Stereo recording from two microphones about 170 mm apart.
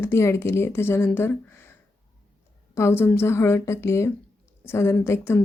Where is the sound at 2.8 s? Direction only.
15° left (ahead or behind).